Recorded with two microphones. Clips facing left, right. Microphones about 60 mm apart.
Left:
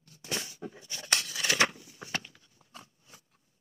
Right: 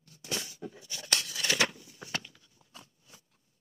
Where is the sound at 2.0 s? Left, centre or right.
Left.